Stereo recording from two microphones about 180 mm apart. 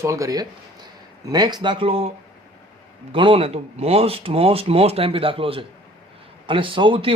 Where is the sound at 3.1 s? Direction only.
25° right (ahead or behind).